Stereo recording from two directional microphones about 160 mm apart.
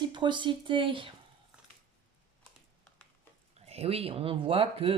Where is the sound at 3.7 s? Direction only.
40° right (ahead or behind).